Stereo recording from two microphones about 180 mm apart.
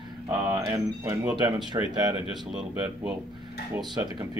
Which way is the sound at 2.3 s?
Centre (ahead or behind).